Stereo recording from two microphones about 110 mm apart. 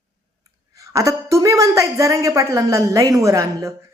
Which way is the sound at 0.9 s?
30° right (ahead or behind).